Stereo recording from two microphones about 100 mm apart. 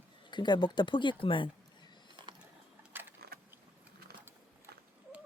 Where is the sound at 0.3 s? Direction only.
50° left (ahead or behind).